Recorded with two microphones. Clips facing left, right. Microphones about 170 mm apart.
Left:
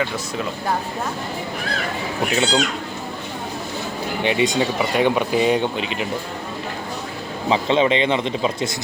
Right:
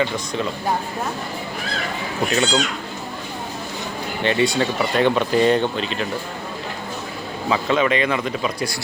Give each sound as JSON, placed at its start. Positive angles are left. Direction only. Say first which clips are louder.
{"t": 2.3, "sound": "speech", "louder": "even", "side_deg": 10}
{"t": 4.2, "sound": "speech", "louder": "even", "side_deg": 15}
{"t": 7.5, "sound": "speech", "louder": "left 2 dB", "side_deg": 25}